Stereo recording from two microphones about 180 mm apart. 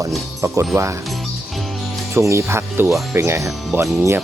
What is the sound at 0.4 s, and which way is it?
Speech, 15° right (ahead or behind).